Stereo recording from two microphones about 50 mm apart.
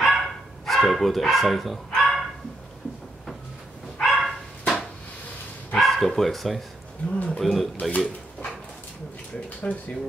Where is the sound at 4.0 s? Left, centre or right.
Centre.